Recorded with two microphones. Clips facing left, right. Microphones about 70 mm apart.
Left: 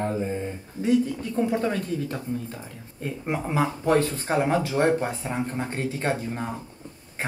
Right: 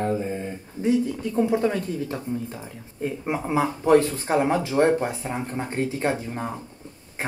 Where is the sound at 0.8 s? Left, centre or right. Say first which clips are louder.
Right 2 dB; right.